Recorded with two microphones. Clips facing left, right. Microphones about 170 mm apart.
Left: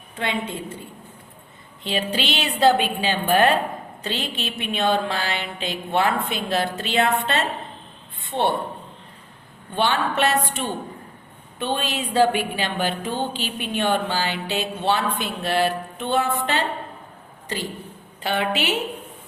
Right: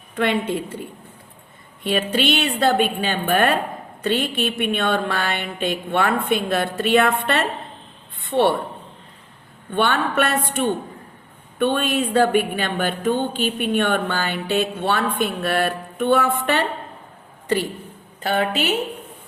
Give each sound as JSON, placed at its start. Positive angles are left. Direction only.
{"t": 0.2, "sound": "a woman's voice", "side_deg": -60}
{"t": 2.1, "sound": "a woman's voice", "side_deg": -50}
{"t": 9.7, "sound": "a woman's voice", "side_deg": -55}
{"t": 18.2, "sound": "a woman's voice", "side_deg": -45}